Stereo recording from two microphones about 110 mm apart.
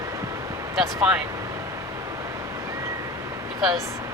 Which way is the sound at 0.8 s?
10° right (ahead or behind).